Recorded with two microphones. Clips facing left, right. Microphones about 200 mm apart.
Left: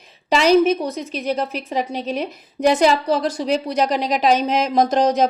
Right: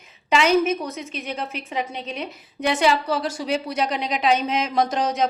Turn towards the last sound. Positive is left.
turn(degrees=40)  # may be behind; listen again after turning